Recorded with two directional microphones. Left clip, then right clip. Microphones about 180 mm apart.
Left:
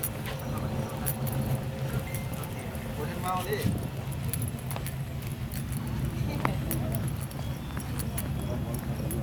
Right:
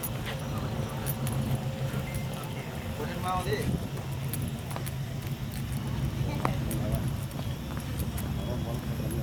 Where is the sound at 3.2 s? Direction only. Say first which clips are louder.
Even; 55° left (ahead or behind).